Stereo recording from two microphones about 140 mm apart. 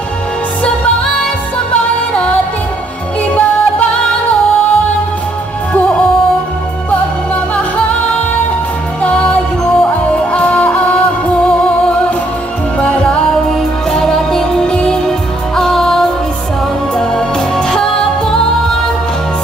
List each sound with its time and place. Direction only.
1.7 s music: 10° left (ahead or behind)
9.0 s music: 10° left (ahead or behind)